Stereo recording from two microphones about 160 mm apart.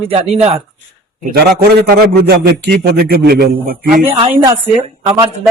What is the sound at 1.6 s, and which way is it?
A man's voice, 80° right.